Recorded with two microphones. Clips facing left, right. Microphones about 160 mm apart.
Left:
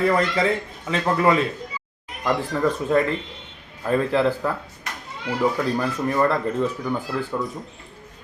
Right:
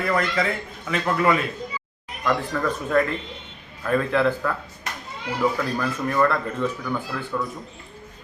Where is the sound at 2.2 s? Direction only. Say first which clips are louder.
Left 2 dB; 25° left (ahead or behind).